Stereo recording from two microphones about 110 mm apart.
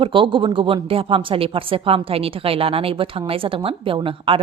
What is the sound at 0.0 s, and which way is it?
A woman's voice, 50° right (ahead or behind).